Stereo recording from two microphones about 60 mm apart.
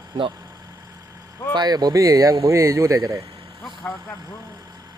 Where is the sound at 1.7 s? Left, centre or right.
Right.